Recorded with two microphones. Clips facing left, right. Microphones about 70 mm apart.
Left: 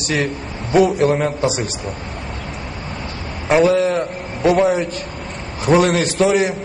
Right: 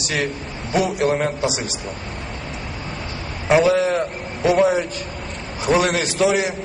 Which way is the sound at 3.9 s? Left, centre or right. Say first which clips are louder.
Left 1 dB; left.